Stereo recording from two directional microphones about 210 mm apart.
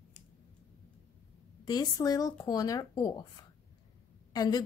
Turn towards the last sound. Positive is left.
turn(degrees=15)  # may be behind; listen again after turning